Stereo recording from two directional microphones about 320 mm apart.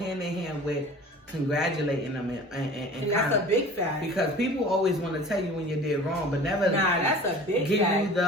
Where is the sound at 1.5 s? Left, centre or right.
Centre.